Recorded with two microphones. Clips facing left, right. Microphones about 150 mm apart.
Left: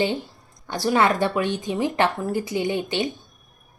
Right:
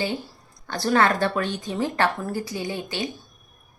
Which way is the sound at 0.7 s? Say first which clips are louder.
Left 1 dB; 15° left (ahead or behind).